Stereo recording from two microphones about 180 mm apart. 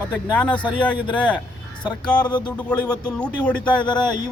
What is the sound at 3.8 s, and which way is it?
Speech, 25° left (ahead or behind).